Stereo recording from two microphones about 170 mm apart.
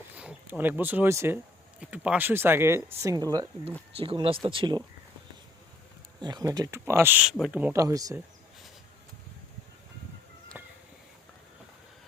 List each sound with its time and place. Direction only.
0.2 s speech: 10° right (ahead or behind)
3.9 s speech: 30° right (ahead or behind)
6.2 s speech: 25° right (ahead or behind)
10.5 s a sound: 10° right (ahead or behind)